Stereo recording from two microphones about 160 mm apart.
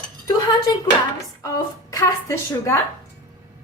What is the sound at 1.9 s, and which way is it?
Speech, 20° left (ahead or behind).